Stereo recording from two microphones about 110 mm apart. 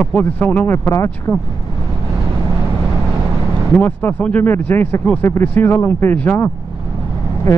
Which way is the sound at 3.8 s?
20° left (ahead or behind).